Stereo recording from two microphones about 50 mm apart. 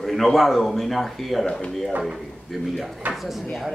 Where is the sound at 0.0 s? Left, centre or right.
Centre.